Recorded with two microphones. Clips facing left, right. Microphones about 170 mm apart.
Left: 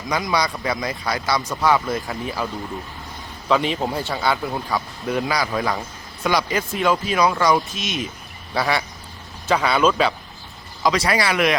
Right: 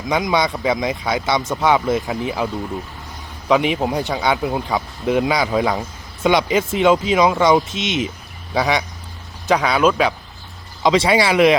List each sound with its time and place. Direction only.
0.1 s speech: 20° right (ahead or behind)
3.5 s speech: 15° right (ahead or behind)
9.6 s speech: 5° right (ahead or behind)
10.8 s speech: 25° right (ahead or behind)